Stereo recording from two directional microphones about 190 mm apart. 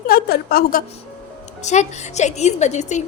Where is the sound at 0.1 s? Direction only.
50° left (ahead or behind).